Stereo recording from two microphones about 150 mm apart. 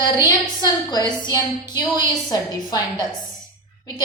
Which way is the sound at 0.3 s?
25° left (ahead or behind).